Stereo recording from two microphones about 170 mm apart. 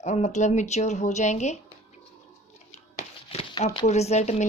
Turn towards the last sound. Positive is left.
turn(degrees=40)  # may be behind; listen again after turning